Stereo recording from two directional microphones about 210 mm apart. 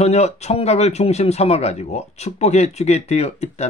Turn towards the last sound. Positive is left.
turn(degrees=30)  # may be behind; listen again after turning